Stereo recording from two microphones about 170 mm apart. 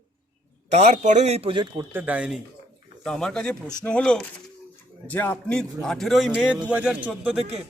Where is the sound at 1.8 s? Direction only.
10° right (ahead or behind).